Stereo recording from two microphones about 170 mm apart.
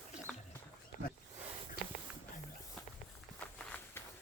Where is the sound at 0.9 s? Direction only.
50° left (ahead or behind).